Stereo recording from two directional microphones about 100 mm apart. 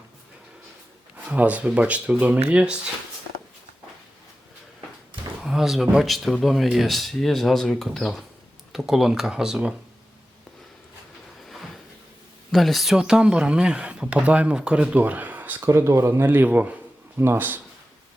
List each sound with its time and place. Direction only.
1.3 s speech: 15° right (ahead or behind)
5.4 s speech: 5° right (ahead or behind)
11.4 s cupboard open or close: centre (ahead or behind)
12.5 s speech: centre (ahead or behind); by 17.6 s 20° right (ahead or behind)